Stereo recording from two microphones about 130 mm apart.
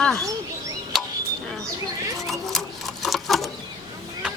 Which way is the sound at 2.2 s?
5° left (ahead or behind).